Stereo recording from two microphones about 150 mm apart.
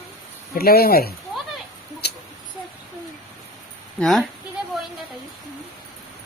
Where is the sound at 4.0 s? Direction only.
5° left (ahead or behind).